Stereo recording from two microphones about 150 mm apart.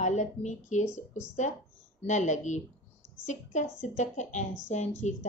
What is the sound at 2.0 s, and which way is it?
Speech, 50° left (ahead or behind).